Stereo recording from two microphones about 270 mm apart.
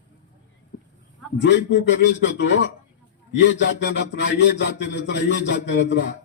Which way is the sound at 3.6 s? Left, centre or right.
Left.